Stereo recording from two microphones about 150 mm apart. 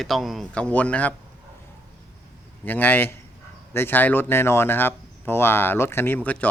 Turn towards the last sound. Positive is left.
turn(degrees=10)  # may be behind; listen again after turning